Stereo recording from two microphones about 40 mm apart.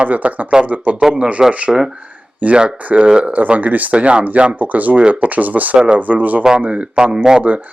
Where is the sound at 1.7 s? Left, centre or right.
Centre.